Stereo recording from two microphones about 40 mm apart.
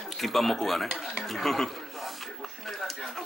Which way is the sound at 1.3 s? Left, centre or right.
Centre.